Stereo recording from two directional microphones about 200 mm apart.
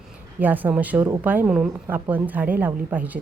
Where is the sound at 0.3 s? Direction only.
10° right (ahead or behind).